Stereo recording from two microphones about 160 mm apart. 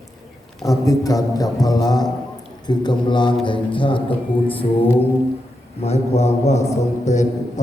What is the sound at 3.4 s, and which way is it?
Mantra, 30° left (ahead or behind).